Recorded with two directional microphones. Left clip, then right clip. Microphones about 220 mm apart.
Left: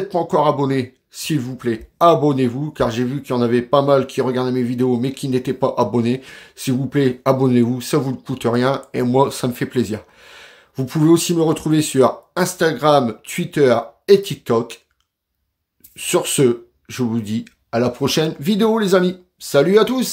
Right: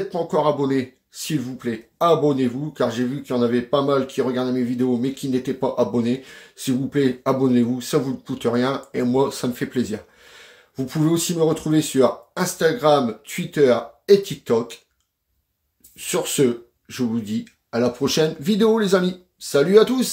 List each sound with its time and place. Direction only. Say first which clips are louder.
0.1 s speech: left 4 dB; 40° left (ahead or behind)
16.0 s speech: left 4 dB; 40° left (ahead or behind)